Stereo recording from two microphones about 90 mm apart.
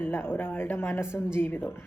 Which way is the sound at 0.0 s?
25° left (ahead or behind).